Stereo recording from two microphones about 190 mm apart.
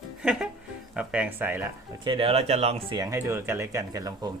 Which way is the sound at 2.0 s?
30° right (ahead or behind).